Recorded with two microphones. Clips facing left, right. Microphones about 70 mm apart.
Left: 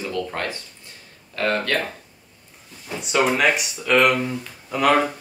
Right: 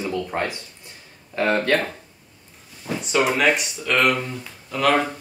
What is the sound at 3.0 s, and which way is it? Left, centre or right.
Speech, centre.